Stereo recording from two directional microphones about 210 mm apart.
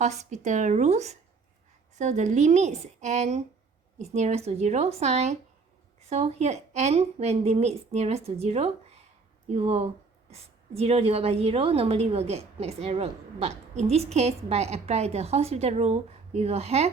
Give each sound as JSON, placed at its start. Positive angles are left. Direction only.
{"t": 0.0, "sound": "a woman's voice", "side_deg": -35}